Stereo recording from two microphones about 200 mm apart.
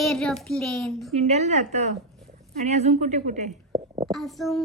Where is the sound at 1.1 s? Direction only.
35° right (ahead or behind).